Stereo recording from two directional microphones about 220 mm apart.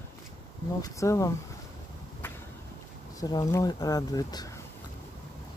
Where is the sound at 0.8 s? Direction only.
15° left (ahead or behind).